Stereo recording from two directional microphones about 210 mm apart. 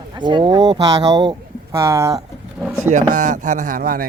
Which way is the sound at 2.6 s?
Centre (ahead or behind).